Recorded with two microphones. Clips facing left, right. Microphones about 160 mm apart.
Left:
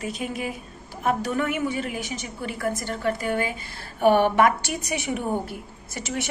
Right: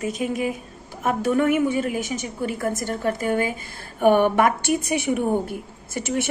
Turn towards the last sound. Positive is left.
turn(degrees=-50)  # may be behind; listen again after turning